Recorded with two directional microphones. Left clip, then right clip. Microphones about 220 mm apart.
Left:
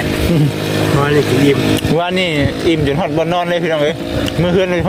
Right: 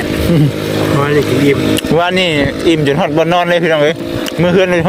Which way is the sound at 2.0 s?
25° right (ahead or behind).